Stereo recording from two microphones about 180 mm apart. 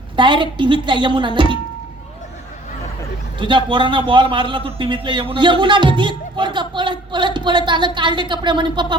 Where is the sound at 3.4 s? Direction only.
25° right (ahead or behind).